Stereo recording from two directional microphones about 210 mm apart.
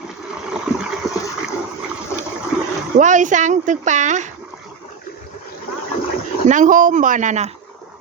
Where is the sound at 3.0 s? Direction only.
35° right (ahead or behind).